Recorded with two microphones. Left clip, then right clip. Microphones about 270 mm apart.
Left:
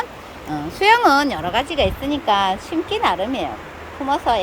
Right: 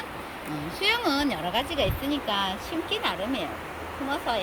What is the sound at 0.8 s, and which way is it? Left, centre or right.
Speech, centre.